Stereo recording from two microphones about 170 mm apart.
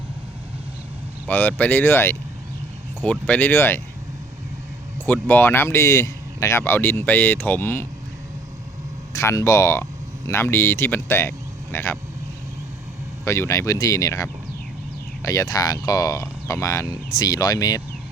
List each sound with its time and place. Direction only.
1.3 s speech: 10° left (ahead or behind)
4.9 s speech: 10° left (ahead or behind)
9.1 s speech: 15° left (ahead or behind)
13.2 s speech: 15° left (ahead or behind)